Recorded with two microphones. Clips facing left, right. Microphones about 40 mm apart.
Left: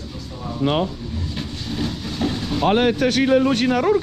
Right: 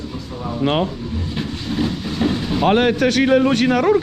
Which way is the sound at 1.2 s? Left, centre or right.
Right.